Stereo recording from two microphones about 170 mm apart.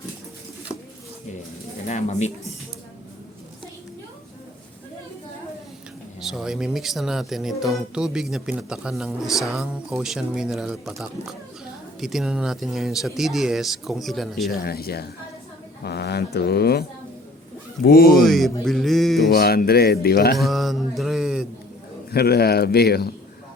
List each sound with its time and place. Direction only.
1.9 s speech: 45° left (ahead or behind)
6.1 s speech: centre (ahead or behind)
14.5 s speech: 60° left (ahead or behind)
17.8 s speech: 60° left (ahead or behind)
18.2 s speech: centre (ahead or behind)
19.3 s speech: 65° left (ahead or behind)
20.4 s mantra: centre (ahead or behind)
22.1 s speech: 65° left (ahead or behind)